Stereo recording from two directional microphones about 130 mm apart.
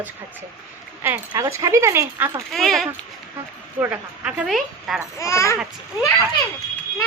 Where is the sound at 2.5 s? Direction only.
Centre (ahead or behind).